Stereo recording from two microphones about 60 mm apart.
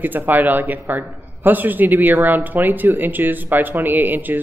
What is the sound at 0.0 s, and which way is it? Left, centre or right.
A man's voice, right.